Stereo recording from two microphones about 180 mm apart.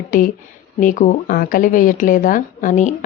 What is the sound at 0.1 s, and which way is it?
Speech, 50° left (ahead or behind).